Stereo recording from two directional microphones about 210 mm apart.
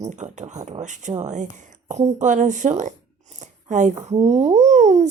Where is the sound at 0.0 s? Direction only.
35° right (ahead or behind).